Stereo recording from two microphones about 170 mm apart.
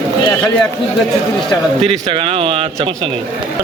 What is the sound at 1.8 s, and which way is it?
Speech, 35° right (ahead or behind).